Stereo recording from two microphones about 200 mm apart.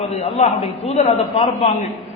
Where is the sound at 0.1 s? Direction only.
30° left (ahead or behind).